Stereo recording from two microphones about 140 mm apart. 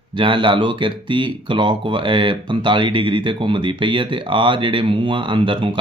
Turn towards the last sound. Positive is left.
turn(degrees=-35)  # may be behind; listen again after turning